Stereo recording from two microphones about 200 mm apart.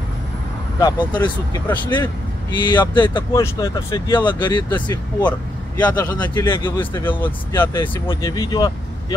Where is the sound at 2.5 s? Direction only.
20° left (ahead or behind).